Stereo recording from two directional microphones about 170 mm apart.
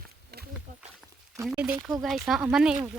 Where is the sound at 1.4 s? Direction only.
5° right (ahead or behind).